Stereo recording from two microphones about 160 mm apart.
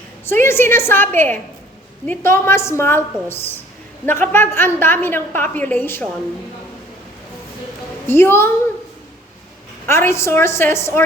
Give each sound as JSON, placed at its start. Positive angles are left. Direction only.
{"t": 0.3, "sound": "a woman's voice", "side_deg": 15}
{"t": 8.0, "sound": "a woman's voice", "side_deg": 15}
{"t": 9.9, "sound": "a woman's voice", "side_deg": 15}